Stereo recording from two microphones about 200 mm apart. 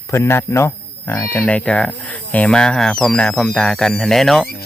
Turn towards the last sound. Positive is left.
turn(degrees=0)  # may be behind; listen again after turning